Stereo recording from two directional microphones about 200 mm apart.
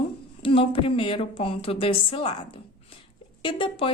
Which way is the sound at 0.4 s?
30° left (ahead or behind).